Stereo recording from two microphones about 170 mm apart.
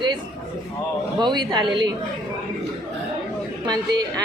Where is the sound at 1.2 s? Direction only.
25° right (ahead or behind).